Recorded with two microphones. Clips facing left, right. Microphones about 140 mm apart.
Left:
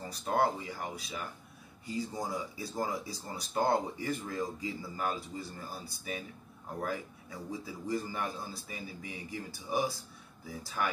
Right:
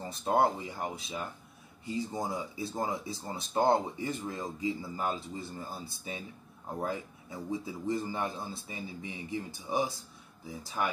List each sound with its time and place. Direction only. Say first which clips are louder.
0.2 s speech: right 3 dB; 25° right (ahead or behind)